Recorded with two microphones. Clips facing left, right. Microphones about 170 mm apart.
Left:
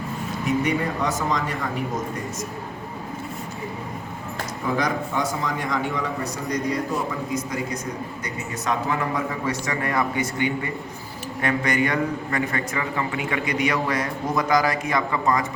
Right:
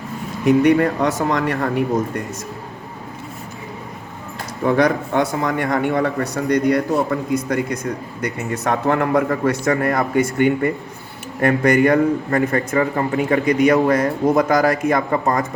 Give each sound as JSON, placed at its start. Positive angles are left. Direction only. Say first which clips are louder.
{"t": 0.4, "sound": "a man's voice", "louder": "right 10 dB", "side_deg": -65}
{"t": 4.6, "sound": "a man's voice", "louder": "right 8 dB", "side_deg": -65}
{"t": 8.2, "sound": "a man's voice", "louder": "right 7 dB", "side_deg": -60}
{"t": 9.6, "sound": "a man's voice", "louder": "right 5 dB", "side_deg": -45}